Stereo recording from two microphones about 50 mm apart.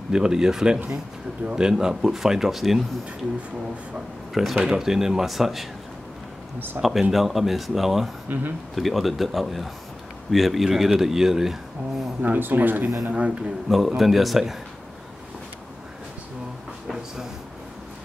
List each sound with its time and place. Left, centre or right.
0.1 s speech: centre
4.3 s speech: centre
4.6 s speech: centre
6.8 s speech: centre
8.3 s speech: right
8.7 s speech: centre
12.4 s speech: right
13.0 s a man's voice: right
13.7 s speech: centre
16.8 s a sound: centre